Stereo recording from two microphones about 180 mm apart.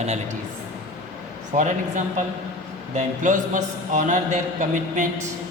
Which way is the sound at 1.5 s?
45° right (ahead or behind).